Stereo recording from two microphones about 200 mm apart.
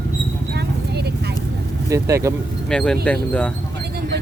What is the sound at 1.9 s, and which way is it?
Speech, 15° right (ahead or behind).